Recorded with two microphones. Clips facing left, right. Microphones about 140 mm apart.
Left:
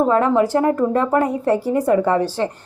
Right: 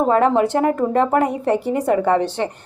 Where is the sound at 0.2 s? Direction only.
20° right (ahead or behind).